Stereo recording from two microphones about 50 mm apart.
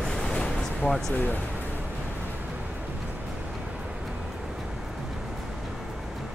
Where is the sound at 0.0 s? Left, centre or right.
Centre.